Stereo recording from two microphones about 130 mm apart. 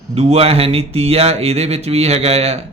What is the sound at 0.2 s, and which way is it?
Speech, 50° right (ahead or behind).